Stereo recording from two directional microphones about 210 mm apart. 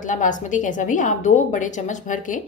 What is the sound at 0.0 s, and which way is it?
A woman's voice, 35° left (ahead or behind).